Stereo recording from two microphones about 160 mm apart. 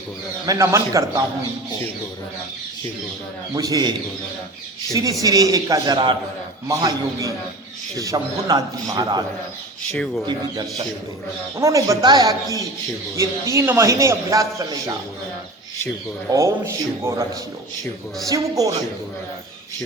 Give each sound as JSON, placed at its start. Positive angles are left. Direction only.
{"t": 0.4, "sound": "a man's voice", "side_deg": -20}
{"t": 3.5, "sound": "a man's voice", "side_deg": -25}
{"t": 5.2, "sound": "a man's voice", "side_deg": -20}
{"t": 9.9, "sound": "speech", "side_deg": 5}
{"t": 10.2, "sound": "a man's voice", "side_deg": -25}
{"t": 16.3, "sound": "a man's voice", "side_deg": -20}
{"t": 18.3, "sound": "a man's voice", "side_deg": -20}